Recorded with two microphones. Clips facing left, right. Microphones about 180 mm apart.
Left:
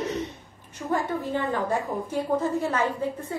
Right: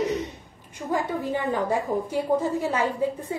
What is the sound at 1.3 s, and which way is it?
A woman's voice, 15° right (ahead or behind).